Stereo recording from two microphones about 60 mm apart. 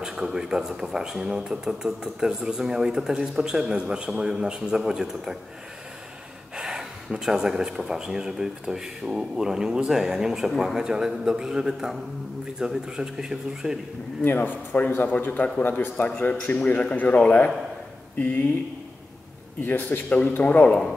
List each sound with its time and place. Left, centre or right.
0.0 s speech: centre
6.5 s speech: centre
14.2 s speech: left
19.6 s speech: left